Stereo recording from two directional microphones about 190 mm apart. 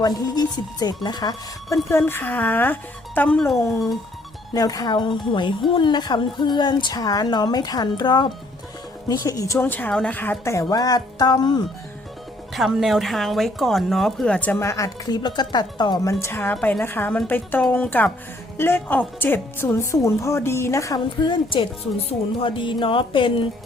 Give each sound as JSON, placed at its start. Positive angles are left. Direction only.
{"t": 0.0, "sound": "speech", "side_deg": 20}
{"t": 4.5, "sound": "a woman's voice", "side_deg": 20}
{"t": 12.5, "sound": "a woman's voice", "side_deg": 0}